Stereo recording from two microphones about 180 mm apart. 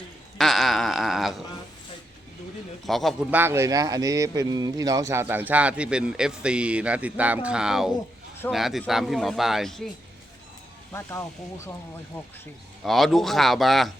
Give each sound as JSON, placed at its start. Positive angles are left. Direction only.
{"t": 0.3, "sound": "a sound", "side_deg": 0}
{"t": 2.8, "sound": "a man's voice", "side_deg": 0}
{"t": 3.3, "sound": "a man's voice", "side_deg": -15}
{"t": 10.9, "sound": "a man's voice", "side_deg": 15}